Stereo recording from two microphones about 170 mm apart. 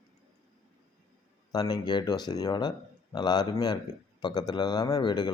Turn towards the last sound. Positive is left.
turn(degrees=25)  # may be behind; listen again after turning